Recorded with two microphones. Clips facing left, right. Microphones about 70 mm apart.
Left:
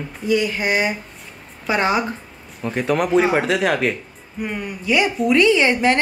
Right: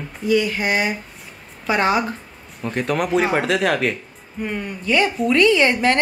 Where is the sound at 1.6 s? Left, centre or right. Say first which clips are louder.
Right 1 dB; centre.